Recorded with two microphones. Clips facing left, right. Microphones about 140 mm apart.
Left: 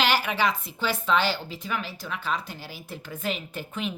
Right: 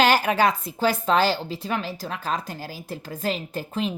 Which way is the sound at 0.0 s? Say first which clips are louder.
Right 5 dB; 45° right (ahead or behind).